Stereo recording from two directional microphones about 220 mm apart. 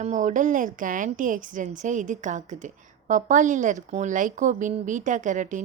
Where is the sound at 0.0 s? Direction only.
35° right (ahead or behind).